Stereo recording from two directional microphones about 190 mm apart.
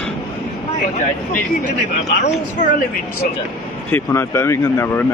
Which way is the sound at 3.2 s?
50° left (ahead or behind).